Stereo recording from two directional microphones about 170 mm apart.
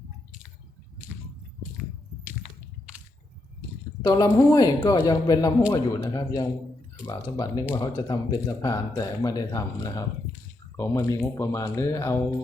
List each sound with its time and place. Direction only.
4.0 s speech: 20° left (ahead or behind)